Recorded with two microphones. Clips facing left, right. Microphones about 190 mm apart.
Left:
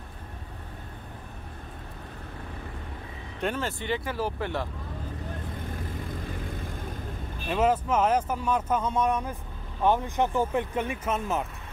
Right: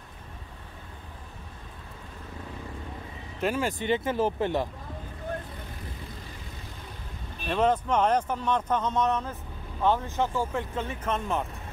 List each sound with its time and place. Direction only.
3.3 s speech: 5° right (ahead or behind)
7.4 s speech: 5° left (ahead or behind)